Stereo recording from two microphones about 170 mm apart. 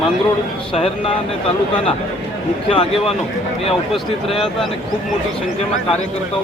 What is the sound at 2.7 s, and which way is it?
Speech, 30° left (ahead or behind).